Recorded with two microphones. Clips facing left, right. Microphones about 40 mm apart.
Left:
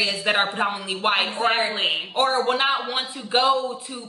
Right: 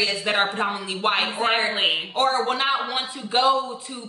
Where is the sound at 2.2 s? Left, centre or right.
Centre.